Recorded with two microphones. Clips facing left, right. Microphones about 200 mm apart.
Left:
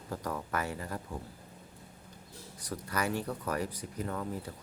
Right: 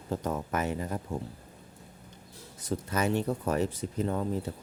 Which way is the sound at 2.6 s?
25° right (ahead or behind).